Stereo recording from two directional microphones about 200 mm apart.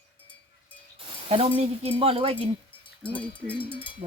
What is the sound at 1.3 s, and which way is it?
Speech, 30° right (ahead or behind).